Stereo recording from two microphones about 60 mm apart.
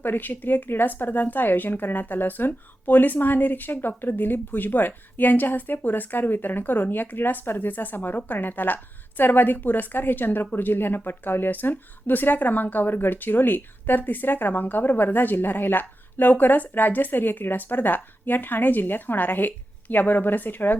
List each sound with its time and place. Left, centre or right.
0.0 s speech: left